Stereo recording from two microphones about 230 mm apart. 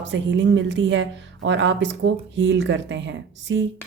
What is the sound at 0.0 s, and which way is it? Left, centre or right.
A woman's voice, right.